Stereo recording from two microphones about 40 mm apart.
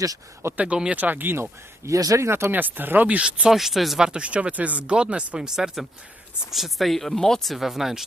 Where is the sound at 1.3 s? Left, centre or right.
Right.